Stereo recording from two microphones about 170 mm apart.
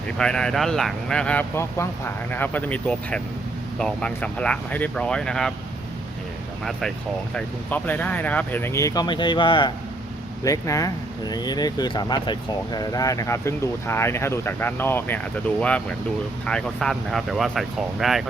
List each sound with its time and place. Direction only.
0.2 s speech: 5° left (ahead or behind)
7.3 s speech: 10° left (ahead or behind)
16.5 s speech: 5° left (ahead or behind)